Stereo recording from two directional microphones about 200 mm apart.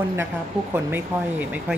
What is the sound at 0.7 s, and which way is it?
Speech, 10° right (ahead or behind).